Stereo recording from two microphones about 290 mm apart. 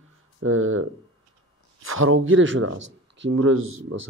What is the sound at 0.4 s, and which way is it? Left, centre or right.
A man's voice, right.